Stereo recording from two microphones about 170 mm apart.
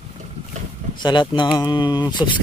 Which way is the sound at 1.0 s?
25° left (ahead or behind).